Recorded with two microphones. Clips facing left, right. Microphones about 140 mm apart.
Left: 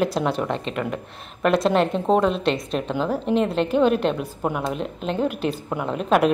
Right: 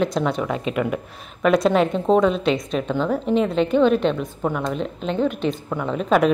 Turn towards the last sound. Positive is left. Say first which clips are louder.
# right 1 dB
turn(degrees=5)  # may be behind; listen again after turning